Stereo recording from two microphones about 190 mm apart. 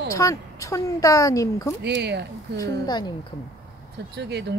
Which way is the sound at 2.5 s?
20° left (ahead or behind).